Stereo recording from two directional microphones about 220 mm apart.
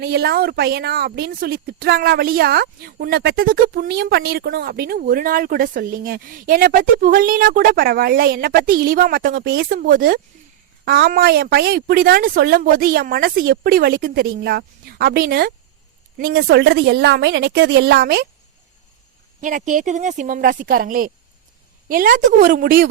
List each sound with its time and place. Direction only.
0.0 s speech: 45° right (ahead or behind)
19.4 s speech: 35° right (ahead or behind)